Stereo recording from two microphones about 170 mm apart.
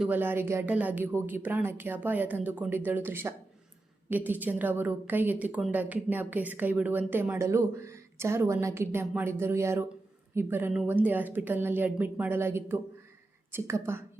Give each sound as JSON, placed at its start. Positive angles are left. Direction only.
{"t": 0.0, "sound": "a woman's voice", "side_deg": -10}